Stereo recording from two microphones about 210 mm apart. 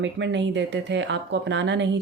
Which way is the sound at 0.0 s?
60° right (ahead or behind).